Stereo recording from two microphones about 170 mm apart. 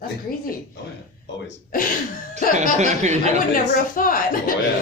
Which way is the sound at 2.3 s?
45° right (ahead or behind).